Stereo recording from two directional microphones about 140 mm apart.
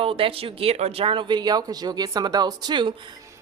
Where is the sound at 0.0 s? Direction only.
40° right (ahead or behind).